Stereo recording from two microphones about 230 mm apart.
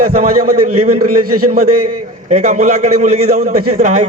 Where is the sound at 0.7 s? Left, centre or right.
Right.